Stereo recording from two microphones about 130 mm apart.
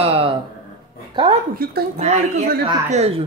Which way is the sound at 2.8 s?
55° right (ahead or behind).